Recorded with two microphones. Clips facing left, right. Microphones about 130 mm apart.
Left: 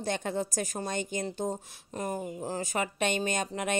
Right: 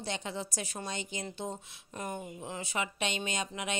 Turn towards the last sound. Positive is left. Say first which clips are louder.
# left 5 dB
turn(degrees=50)  # may be behind; listen again after turning